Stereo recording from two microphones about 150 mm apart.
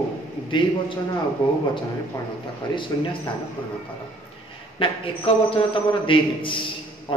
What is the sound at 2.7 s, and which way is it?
Speech, 35° left (ahead or behind).